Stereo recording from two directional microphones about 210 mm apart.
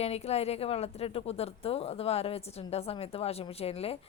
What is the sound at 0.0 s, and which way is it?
Speech, 30° left (ahead or behind).